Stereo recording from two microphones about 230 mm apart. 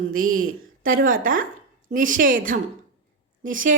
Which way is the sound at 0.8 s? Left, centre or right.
Right.